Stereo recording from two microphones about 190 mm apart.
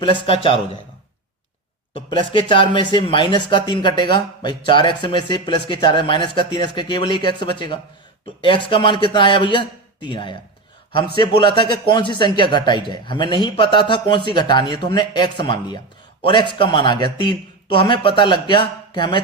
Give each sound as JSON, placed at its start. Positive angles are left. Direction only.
{"t": 0.0, "sound": "speech", "side_deg": 30}
{"t": 2.0, "sound": "speech", "side_deg": 25}